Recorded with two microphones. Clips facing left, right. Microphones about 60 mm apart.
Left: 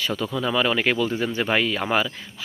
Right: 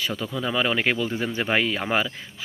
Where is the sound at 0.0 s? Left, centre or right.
Centre.